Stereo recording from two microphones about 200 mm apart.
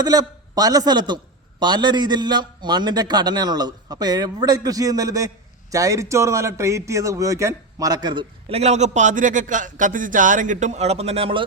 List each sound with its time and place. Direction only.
0.0 s a man's voice: 20° right (ahead or behind)